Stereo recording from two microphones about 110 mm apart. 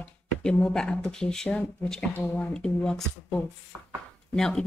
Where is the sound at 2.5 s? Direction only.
5° left (ahead or behind).